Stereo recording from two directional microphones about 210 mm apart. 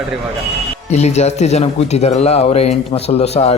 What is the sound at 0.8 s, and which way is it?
A man's voice, 30° left (ahead or behind).